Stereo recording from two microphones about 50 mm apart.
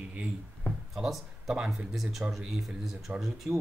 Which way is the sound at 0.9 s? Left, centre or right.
Centre.